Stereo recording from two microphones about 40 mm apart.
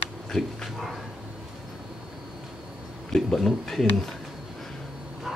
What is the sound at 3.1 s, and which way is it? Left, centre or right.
Speech, centre.